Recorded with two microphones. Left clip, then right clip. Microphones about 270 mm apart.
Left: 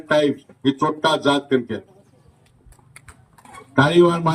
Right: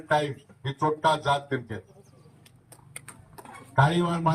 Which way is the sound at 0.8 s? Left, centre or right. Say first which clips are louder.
Left 3 dB; left.